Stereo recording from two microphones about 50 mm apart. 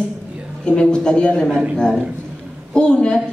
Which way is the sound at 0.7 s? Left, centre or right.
Centre.